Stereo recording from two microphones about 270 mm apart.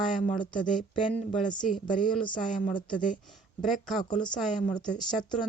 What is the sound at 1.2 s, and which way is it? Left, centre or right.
Speech, left.